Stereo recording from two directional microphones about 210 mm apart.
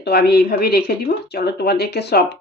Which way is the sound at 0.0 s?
50° left (ahead or behind).